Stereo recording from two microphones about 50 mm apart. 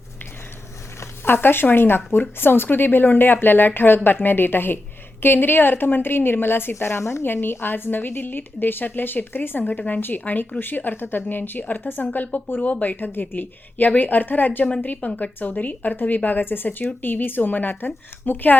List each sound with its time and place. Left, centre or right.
0.9 s a sound: left
1.7 s a woman's voice: left
6.7 s speech: left
7.4 s a woman's voice: left
9.6 s speech: left